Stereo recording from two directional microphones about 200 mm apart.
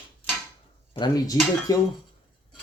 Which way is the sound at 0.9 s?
20° left (ahead or behind).